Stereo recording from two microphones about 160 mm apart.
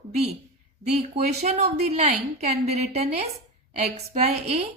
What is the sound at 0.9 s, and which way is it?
A woman's voice, 40° right (ahead or behind).